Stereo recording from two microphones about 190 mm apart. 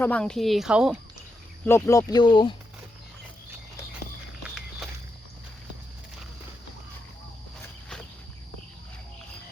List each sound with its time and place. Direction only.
0.0 s speech: 5° left (ahead or behind)
1.6 s speech: 15° left (ahead or behind)
4.4 s walk: centre (ahead or behind)